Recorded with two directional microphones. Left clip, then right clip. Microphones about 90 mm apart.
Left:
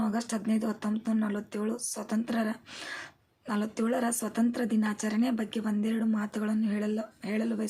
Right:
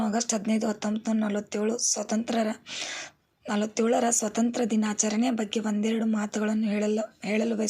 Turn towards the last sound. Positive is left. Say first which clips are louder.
# right 6 dB
turn(degrees=-20)  # may be behind; listen again after turning